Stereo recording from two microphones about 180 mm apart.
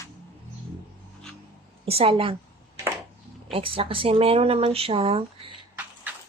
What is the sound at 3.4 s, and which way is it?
Speech, 30° right (ahead or behind).